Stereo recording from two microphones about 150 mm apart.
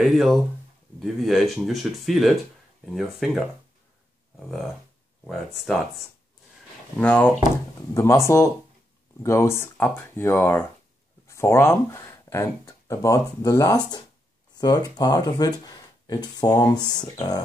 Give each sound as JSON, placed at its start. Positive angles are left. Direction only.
{"t": 0.0, "sound": "speech", "side_deg": 0}
{"t": 4.5, "sound": "speech", "side_deg": 0}
{"t": 7.0, "sound": "speech", "side_deg": 10}
{"t": 9.2, "sound": "speech", "side_deg": 20}